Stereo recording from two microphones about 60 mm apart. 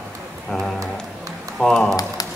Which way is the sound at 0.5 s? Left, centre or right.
Centre.